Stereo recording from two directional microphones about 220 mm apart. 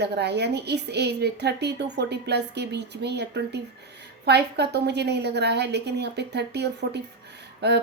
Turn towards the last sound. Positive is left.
turn(degrees=-50)  # may be behind; listen again after turning